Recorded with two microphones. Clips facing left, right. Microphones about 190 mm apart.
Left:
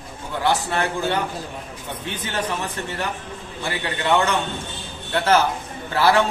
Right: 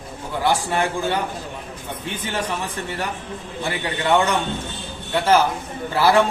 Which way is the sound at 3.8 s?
15° right (ahead or behind).